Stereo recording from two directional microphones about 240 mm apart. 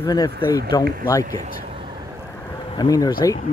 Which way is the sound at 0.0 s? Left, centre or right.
Centre.